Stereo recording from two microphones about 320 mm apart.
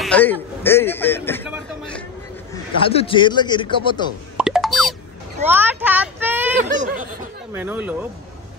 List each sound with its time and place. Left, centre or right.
0.0 s speech: centre
1.5 s vehicle: centre
2.5 s a man's voice: centre
4.4 s plop: centre
5.5 s child singing: centre
6.6 s snicker: right
7.5 s speech: centre